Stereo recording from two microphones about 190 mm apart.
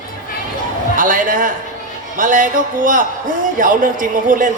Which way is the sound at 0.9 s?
45° right (ahead or behind).